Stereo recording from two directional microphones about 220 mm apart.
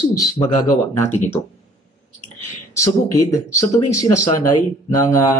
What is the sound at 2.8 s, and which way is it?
Speech, 15° left (ahead or behind).